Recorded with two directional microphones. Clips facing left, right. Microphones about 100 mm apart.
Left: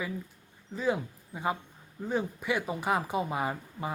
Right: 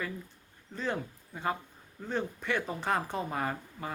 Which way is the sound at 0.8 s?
10° left (ahead or behind).